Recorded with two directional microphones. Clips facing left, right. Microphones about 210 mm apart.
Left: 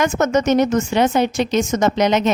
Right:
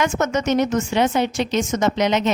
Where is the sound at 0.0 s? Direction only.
40° left (ahead or behind).